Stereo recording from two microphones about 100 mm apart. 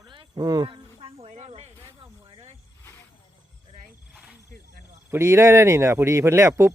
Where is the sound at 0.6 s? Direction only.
65° right (ahead or behind); by 1.7 s 90° right.